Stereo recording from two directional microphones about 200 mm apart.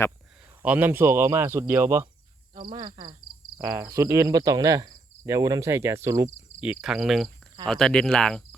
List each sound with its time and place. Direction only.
0.6 s speech: 10° right (ahead or behind)
6.7 s speech: centre (ahead or behind)